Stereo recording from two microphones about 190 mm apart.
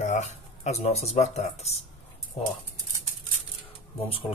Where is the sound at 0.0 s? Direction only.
40° left (ahead or behind).